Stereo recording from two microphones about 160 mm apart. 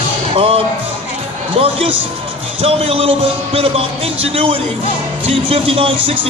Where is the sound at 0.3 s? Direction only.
35° right (ahead or behind).